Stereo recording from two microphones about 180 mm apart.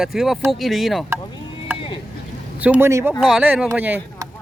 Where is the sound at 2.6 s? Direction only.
10° right (ahead or behind).